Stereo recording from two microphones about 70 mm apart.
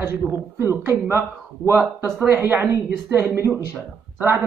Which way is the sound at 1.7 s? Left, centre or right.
Right.